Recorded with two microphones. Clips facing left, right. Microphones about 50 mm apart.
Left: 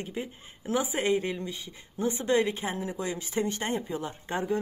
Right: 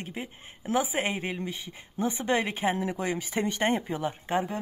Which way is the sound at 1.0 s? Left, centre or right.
Right.